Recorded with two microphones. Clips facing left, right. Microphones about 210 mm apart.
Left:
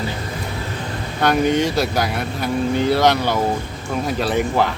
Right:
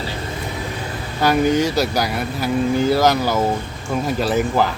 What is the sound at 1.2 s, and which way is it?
Speech, 5° right (ahead or behind).